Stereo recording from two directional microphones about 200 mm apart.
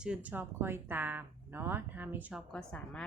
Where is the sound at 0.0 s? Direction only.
5° right (ahead or behind).